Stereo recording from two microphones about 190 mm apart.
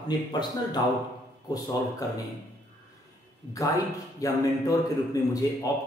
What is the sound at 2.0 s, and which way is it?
Speech, 20° left (ahead or behind).